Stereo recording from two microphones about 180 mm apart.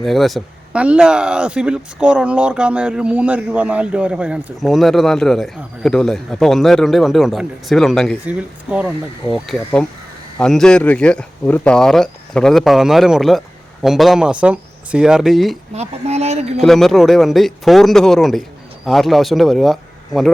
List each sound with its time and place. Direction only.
0.0 s speech: centre (ahead or behind)
15.7 s speech: 35° right (ahead or behind)
16.6 s speech: centre (ahead or behind)